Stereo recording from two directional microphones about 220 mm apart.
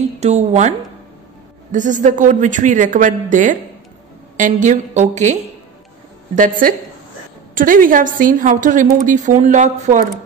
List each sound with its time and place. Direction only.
0.2 s a woman's voice: 30° right (ahead or behind)